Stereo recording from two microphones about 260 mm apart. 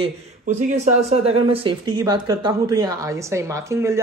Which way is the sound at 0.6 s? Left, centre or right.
Right.